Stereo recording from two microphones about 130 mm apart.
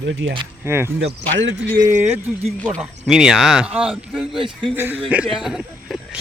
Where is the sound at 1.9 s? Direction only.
60° right (ahead or behind).